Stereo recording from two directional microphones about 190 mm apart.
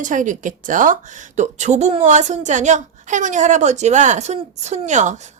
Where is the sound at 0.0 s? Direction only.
40° right (ahead or behind).